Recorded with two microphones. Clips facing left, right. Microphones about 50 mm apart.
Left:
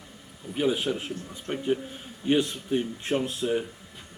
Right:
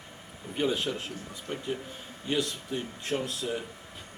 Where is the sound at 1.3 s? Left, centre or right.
Left.